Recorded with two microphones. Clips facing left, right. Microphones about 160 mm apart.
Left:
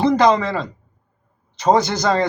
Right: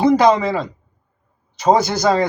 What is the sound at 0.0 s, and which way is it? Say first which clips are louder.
Speech: right 2 dB; 5° right (ahead or behind).